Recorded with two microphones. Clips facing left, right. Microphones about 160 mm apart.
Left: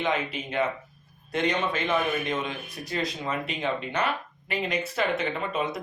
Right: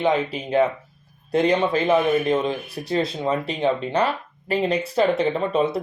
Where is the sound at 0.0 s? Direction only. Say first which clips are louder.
Right 7 dB; 35° right (ahead or behind).